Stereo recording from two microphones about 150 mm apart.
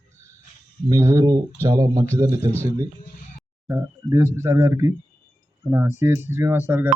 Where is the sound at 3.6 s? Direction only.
20° right (ahead or behind).